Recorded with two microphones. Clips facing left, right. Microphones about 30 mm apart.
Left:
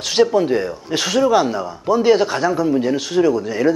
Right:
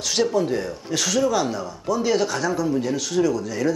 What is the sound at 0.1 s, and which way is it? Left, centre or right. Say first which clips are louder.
Speech: left 6 dB; left.